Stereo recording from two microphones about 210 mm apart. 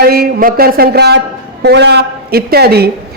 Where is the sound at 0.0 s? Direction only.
45° right (ahead or behind).